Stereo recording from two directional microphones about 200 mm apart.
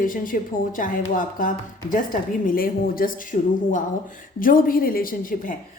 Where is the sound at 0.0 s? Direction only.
45° left (ahead or behind).